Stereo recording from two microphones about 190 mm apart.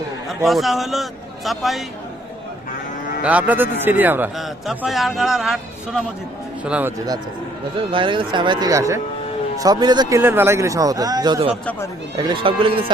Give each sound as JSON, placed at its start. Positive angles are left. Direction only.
{"t": 0.3, "sound": "a man's voice", "side_deg": 0}
{"t": 3.2, "sound": "a man's voice", "side_deg": -10}
{"t": 7.9, "sound": "a man's voice", "side_deg": -25}